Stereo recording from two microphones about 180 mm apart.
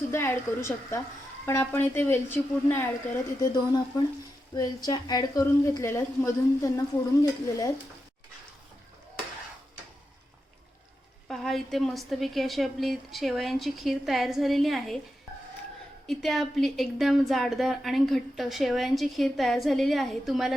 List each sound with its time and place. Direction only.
0.1 s a woman's voice: 15° left (ahead or behind)
3.4 s a woman's voice: 20° left (ahead or behind)
11.3 s a woman's voice: centre (ahead or behind)
16.0 s a woman's voice: centre (ahead or behind)